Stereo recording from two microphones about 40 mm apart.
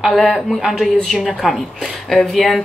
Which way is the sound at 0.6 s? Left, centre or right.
Centre.